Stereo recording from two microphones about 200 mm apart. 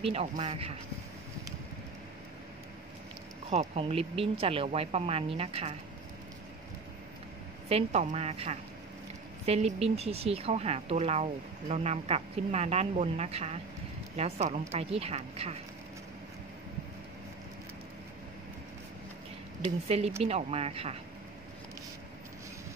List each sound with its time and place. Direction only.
0.0 s speech: 30° right (ahead or behind)
3.4 s speech: 30° right (ahead or behind)
7.7 s speech: 35° right (ahead or behind)
19.9 s speech: 30° right (ahead or behind)